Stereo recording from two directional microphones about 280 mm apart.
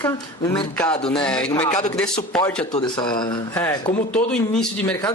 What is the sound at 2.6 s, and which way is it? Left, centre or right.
Speech, centre.